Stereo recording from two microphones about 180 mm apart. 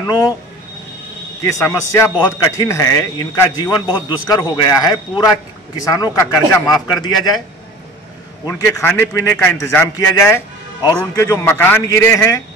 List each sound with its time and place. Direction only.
0.0 s speech: 15° left (ahead or behind)
1.4 s a man's voice: 15° left (ahead or behind)
8.5 s a man's voice: 15° left (ahead or behind)